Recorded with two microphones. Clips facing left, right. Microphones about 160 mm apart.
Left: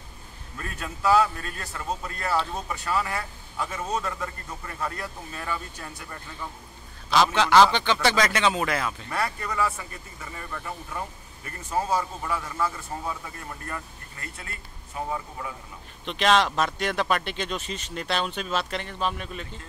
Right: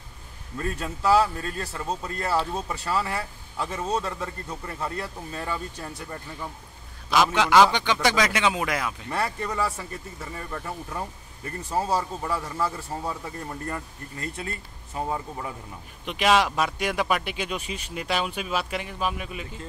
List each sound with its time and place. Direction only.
0.6 s a man's voice: 30° right (ahead or behind)
7.1 s speech: 10° right (ahead or behind)
9.1 s a man's voice: 30° right (ahead or behind)
11.4 s a man's voice: 35° right (ahead or behind)
16.1 s speech: 10° right (ahead or behind)